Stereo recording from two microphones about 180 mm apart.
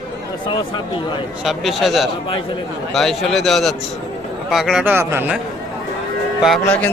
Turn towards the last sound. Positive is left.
turn(degrees=5)  # may be behind; listen again after turning